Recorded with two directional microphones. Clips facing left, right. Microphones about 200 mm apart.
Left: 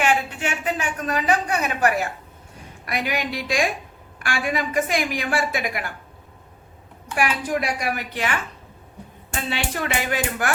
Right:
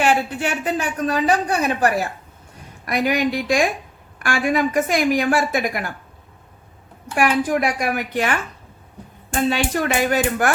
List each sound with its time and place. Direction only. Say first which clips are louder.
0.0 s a woman's voice: right 3 dB; 35° right (ahead or behind)
2.8 s a woman's voice: right 7 dB; 45° right (ahead or behind)
7.2 s a woman's voice: right 5 dB; 50° right (ahead or behind)